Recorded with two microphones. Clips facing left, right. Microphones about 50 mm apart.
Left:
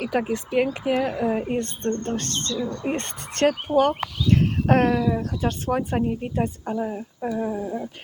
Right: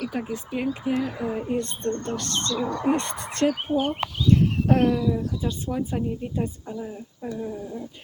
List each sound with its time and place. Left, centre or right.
0.1 s speech: left
1.2 s speech: left
3.8 s speech: left